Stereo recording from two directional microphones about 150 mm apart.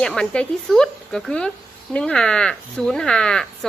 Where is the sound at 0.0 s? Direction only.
5° left (ahead or behind).